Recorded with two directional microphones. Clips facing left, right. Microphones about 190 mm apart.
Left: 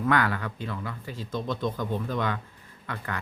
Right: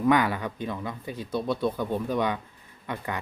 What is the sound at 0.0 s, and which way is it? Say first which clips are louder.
Speech: right 3 dB; 15° right (ahead or behind).